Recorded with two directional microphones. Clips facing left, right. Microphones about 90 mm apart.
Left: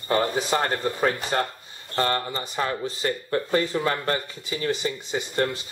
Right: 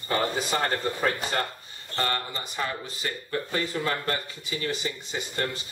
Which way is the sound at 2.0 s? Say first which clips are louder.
Left 5 dB; 35° left (ahead or behind).